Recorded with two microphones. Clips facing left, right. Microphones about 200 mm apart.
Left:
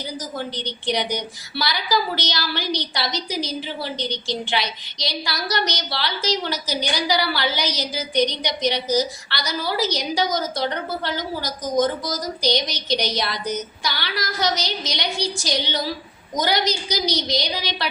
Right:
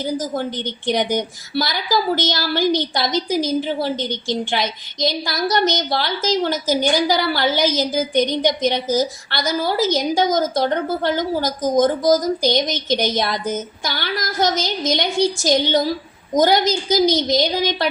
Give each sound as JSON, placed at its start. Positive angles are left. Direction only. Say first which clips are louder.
{"t": 0.0, "sound": "a woman's voice", "louder": "right 7 dB", "side_deg": -50}